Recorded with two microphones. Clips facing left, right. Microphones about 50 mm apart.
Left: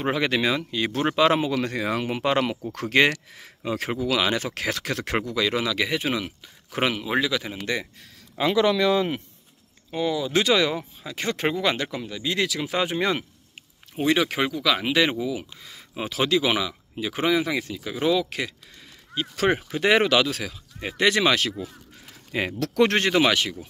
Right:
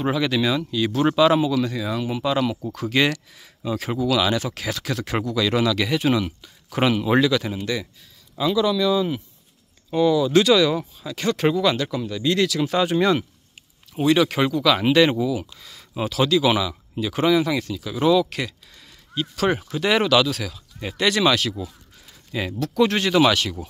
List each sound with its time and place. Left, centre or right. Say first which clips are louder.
0.0 s speech: right 2 dB; left
3.0 s speech: left 1 dB; left
3.9 s speech: right 3 dB; left; by 7.5 s centre
7.6 s speech: right 1 dB; left
8.4 s speech: even; left
9.8 s speech: right 7 dB; centre
12.0 s speech: right 5 dB; centre
17.9 s speech: right 5 dB; centre
19.1 s speech: right 1 dB; left
22.0 s a sound: left 1 dB; left
22.6 s speech: right 1 dB; left
23.2 s speech: right 3 dB; left